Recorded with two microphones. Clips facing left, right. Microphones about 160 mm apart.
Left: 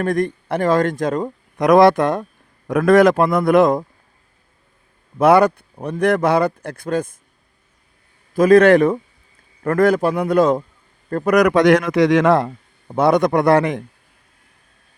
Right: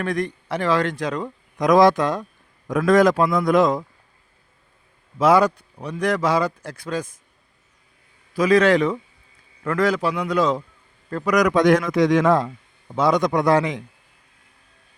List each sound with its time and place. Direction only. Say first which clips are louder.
0.0 s speech: left 5 dB; 50° left (ahead or behind)
1.6 s speech: left 3 dB; 65° left (ahead or behind)
5.1 s speech: left 4 dB; 60° left (ahead or behind)
8.3 s a man's voice: left 6 dB; 50° left (ahead or behind); by 12.5 s 70° left (ahead or behind)
13.0 s speech: left 4 dB; 60° left (ahead or behind)